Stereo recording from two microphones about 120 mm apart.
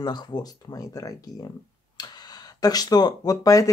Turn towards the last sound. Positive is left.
turn(degrees=30)  # may be behind; listen again after turning